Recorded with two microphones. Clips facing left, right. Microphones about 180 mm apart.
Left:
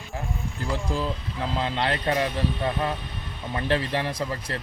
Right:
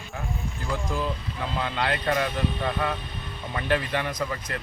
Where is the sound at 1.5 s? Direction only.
30° left (ahead or behind).